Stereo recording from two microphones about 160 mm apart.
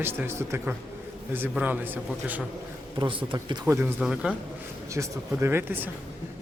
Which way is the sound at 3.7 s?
15° right (ahead or behind).